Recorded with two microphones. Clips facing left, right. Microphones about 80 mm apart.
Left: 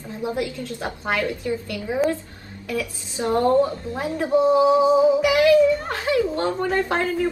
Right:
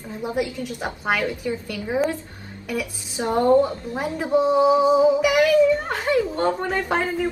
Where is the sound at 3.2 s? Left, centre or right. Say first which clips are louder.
Right 1 dB; centre.